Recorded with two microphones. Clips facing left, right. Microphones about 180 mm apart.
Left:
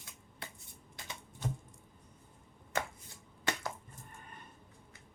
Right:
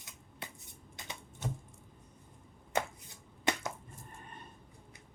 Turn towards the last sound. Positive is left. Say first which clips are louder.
# right 3 dB
turn(degrees=-20)  # may be behind; listen again after turning